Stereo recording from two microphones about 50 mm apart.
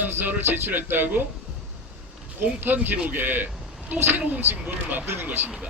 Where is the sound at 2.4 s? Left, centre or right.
Right.